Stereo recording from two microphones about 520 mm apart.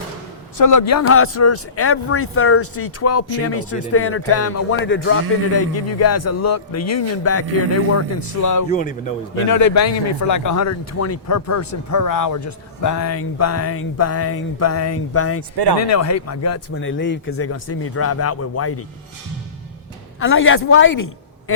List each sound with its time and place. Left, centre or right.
0.6 s speech: left
8.7 s a man's voice: centre
9.5 s speech: left
20.1 s a woman's voice: left